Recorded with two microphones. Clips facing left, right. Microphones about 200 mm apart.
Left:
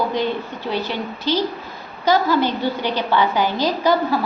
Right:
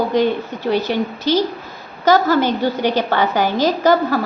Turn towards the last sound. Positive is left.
turn(degrees=-45)  # may be behind; listen again after turning